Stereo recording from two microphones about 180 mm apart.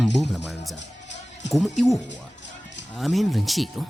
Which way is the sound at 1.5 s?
Centre (ahead or behind).